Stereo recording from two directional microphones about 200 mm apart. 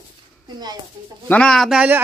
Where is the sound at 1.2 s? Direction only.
5° left (ahead or behind).